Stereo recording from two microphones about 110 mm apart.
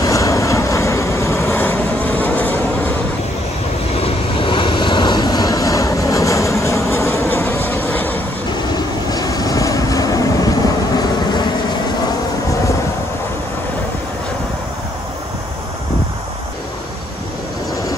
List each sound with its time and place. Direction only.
0.0 s vehicle: 30° left (ahead or behind)
3.9 s vehicle: 60° left (ahead or behind); by 8.2 s 20° left (ahead or behind)
8.7 s vehicle: 35° left (ahead or behind)